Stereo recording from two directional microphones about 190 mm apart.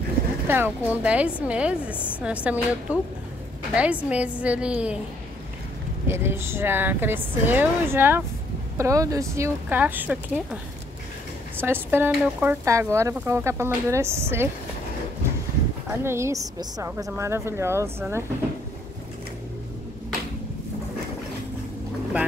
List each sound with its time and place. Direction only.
0.5 s speech: 10° right (ahead or behind)
6.0 s speech: 10° right (ahead or behind)
11.6 s speech: 10° right (ahead or behind)
16.0 s speech: 15° right (ahead or behind)